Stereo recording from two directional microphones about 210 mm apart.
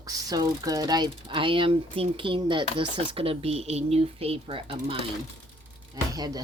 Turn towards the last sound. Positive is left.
turn(degrees=-20)  # may be behind; listen again after turning